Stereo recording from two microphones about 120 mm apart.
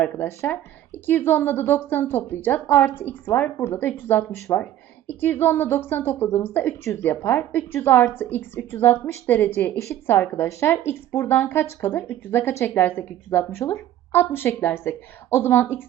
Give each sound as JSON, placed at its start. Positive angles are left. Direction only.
{"t": 0.0, "sound": "a woman's voice", "side_deg": 15}